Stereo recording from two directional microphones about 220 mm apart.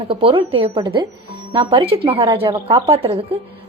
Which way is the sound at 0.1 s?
25° right (ahead or behind).